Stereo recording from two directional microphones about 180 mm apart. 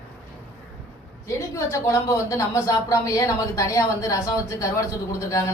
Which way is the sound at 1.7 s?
20° left (ahead or behind).